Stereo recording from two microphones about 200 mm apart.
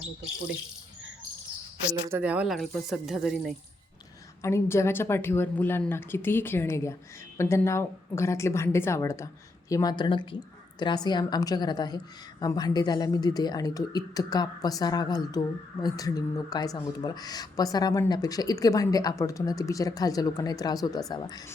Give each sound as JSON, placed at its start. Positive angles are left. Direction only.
{"t": 1.9, "sound": "speech", "side_deg": -10}
{"t": 4.4, "sound": "a woman's voice", "side_deg": 15}